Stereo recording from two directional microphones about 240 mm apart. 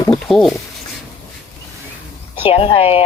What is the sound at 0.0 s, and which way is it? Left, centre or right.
Speech, centre.